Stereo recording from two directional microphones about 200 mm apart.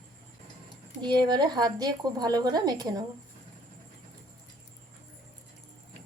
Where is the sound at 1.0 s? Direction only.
20° right (ahead or behind).